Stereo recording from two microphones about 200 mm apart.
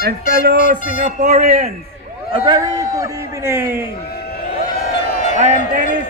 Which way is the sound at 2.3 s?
20° right (ahead or behind).